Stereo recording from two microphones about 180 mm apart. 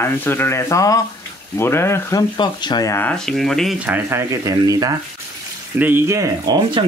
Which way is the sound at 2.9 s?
5° left (ahead or behind).